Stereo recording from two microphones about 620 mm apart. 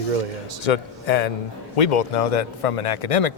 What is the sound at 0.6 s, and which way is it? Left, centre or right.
Speech, left.